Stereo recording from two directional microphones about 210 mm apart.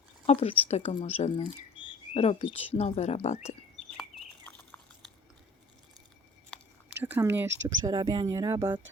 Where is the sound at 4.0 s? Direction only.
5° left (ahead or behind).